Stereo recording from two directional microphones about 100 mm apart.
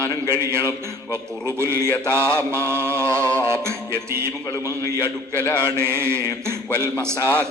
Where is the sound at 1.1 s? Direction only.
25° right (ahead or behind).